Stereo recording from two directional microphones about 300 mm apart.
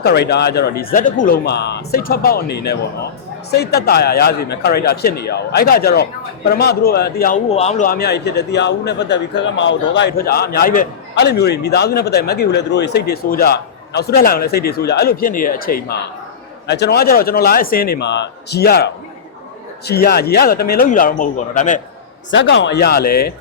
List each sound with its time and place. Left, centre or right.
0.0 s a man's voice: left
22.3 s speech: left